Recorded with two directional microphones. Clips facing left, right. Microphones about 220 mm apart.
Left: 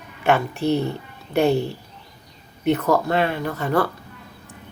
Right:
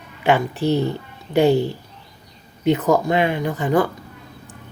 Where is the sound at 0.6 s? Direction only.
10° right (ahead or behind).